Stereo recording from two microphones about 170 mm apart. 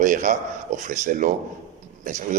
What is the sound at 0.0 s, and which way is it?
A man's voice, 45° right (ahead or behind).